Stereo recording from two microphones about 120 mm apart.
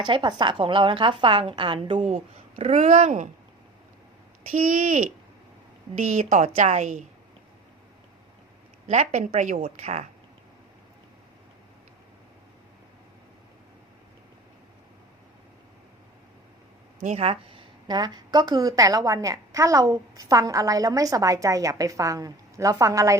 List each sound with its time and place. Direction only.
0.0 s a woman's voice: 40° right (ahead or behind); by 3.2 s 80° right
4.5 s speech: 90° right
6.0 s a woman's voice: 80° right
8.9 s a woman's voice: 70° right (ahead or behind)
17.0 s speech: 90° right
17.2 s a woman's voice: 45° right (ahead or behind); by 23.1 s 25° right (ahead or behind)